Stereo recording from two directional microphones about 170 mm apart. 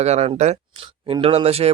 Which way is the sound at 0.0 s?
40° right (ahead or behind).